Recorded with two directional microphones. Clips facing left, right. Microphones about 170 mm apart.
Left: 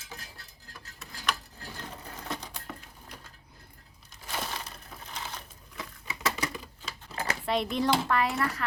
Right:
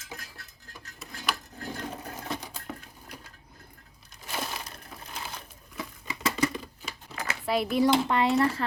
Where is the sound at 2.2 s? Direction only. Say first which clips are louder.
Right 1 dB; 5° right (ahead or behind).